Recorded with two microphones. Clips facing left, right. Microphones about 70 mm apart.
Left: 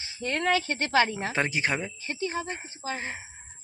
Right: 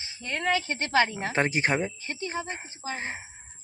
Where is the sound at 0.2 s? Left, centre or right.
Centre.